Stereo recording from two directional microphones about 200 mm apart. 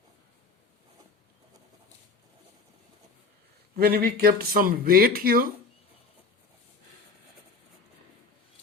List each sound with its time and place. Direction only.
3.8 s speech: 50° right (ahead or behind)